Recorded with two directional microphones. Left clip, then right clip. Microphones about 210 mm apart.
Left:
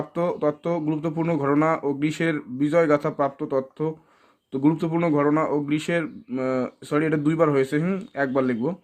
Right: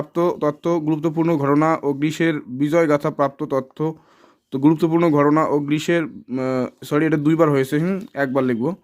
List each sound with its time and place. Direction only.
0.1 s speech: 40° right (ahead or behind)